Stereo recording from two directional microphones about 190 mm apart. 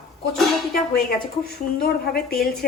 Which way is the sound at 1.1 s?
55° left (ahead or behind).